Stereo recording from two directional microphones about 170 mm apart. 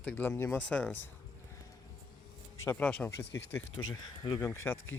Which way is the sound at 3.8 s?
25° left (ahead or behind).